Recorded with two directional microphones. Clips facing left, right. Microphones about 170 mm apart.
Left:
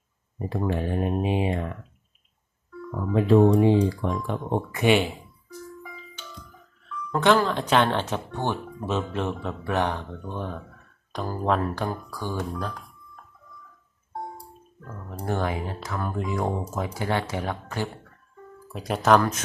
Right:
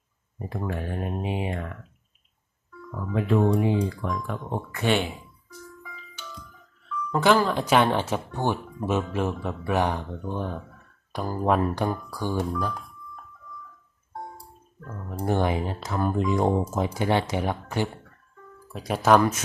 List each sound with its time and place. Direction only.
0.5 s speech: 25° left (ahead or behind)
2.9 s speech: 30° left (ahead or behind)
4.8 s speech: 10° left (ahead or behind)
7.1 s speech: 5° right (ahead or behind)
15.3 s speech: 20° right (ahead or behind)
18.7 s speech: centre (ahead or behind)